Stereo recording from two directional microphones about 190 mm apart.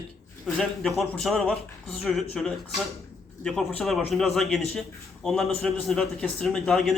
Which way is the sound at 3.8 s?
Centre (ahead or behind).